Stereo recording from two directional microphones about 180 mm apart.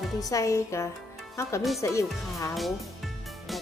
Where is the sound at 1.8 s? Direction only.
15° left (ahead or behind).